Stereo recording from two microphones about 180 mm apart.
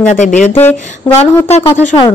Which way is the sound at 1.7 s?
20° left (ahead or behind).